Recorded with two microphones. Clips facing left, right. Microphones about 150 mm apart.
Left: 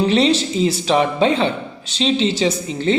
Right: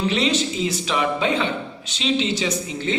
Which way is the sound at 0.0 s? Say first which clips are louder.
Left 6 dB; 35° left (ahead or behind).